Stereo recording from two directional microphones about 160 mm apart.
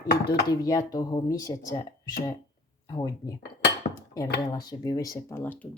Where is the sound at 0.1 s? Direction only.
85° left.